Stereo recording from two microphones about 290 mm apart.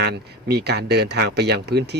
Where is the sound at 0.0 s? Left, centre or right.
Right.